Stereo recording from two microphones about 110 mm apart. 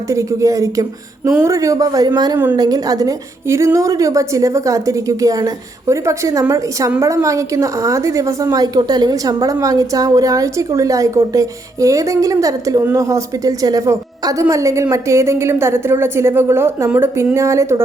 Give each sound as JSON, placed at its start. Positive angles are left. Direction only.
{"t": 0.1, "sound": "a woman's voice", "side_deg": -30}